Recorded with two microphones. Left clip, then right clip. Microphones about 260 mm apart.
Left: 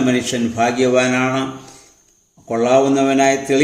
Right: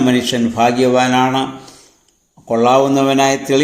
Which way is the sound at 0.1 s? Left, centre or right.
Centre.